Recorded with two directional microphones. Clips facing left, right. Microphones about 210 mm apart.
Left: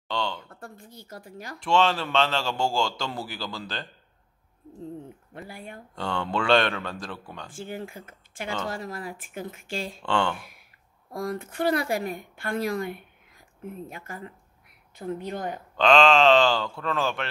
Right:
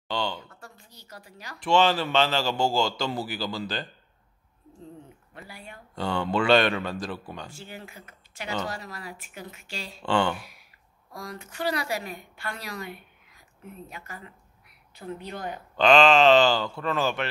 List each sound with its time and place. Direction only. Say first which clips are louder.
0.1 s speech: even; 5° right (ahead or behind)
0.5 s a woman's voice: left 6 dB; 55° left (ahead or behind)
1.6 s a man's voice: right 1 dB; centre (ahead or behind)
5.5 s speech: left 3 dB; 50° left (ahead or behind)
5.9 s a man's voice: right 3 dB; 5° right (ahead or behind)
7.5 s speech: left 7 dB; 50° left (ahead or behind)
10.0 s a man's voice: right 2 dB; centre (ahead or behind)
10.3 s a woman's voice: right 1 dB; 50° left (ahead or behind)
15.8 s a man's voice: right 1 dB; centre (ahead or behind)